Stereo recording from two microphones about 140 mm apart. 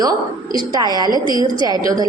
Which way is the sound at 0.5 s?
30° right (ahead or behind).